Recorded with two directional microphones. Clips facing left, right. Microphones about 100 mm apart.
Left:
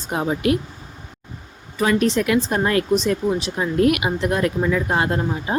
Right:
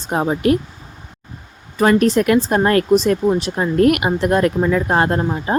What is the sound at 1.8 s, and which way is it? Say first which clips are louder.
Speech: right 5 dB; 50° right (ahead or behind).